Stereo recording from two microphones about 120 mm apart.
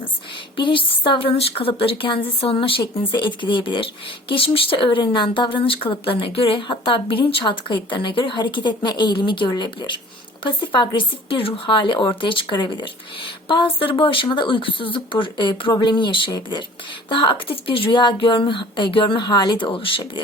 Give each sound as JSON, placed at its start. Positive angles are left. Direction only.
{"t": 0.5, "sound": "speech", "side_deg": 45}